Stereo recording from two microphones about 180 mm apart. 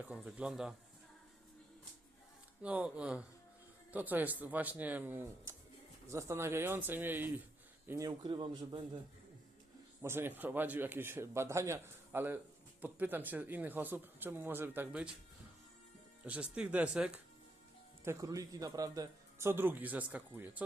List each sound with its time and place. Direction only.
0.0 s speech: 5° right (ahead or behind)
2.6 s speech: 5° right (ahead or behind); by 9.0 s 25° right (ahead or behind)
10.0 s speech: 10° right (ahead or behind)
16.2 s speech: 5° right (ahead or behind)
18.0 s speech: 15° right (ahead or behind)